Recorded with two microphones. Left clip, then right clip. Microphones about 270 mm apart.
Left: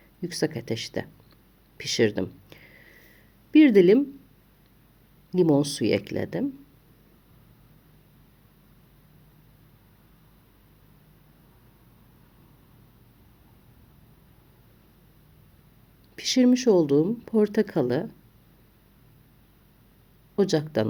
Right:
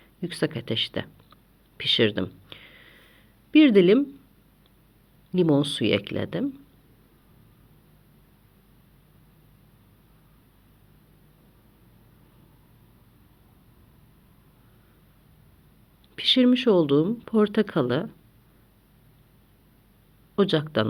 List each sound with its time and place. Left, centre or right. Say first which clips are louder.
0.2 s speech: even; centre
2.6 s a sound: right 2 dB; centre
3.5 s speech: even; centre
5.3 s speech: even; centre
16.1 s speech: right 2 dB; centre
20.3 s speech: right 1 dB; centre